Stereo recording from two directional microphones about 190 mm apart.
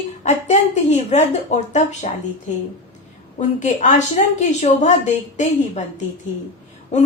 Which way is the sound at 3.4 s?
40° left (ahead or behind).